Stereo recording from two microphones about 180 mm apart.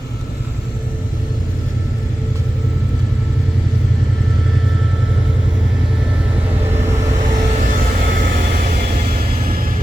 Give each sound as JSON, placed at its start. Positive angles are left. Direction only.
{"t": 7.7, "sound": "vehicle", "side_deg": -50}